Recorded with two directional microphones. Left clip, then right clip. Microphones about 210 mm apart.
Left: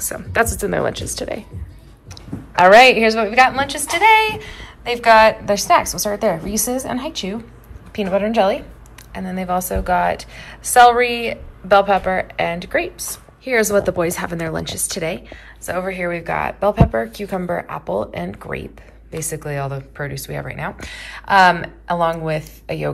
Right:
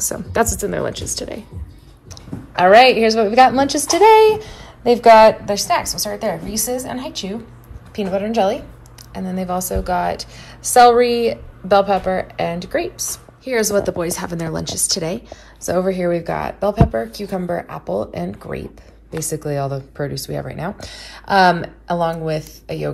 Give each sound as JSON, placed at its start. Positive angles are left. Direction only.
{"t": 0.0, "sound": "a woman's voice", "side_deg": -20}
{"t": 2.5, "sound": "a woman's voice", "side_deg": -10}